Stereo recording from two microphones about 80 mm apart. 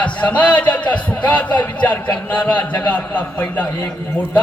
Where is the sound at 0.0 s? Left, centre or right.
Centre.